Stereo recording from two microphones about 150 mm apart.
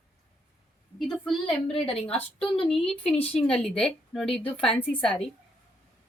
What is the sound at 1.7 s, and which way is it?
Speech, 40° left (ahead or behind).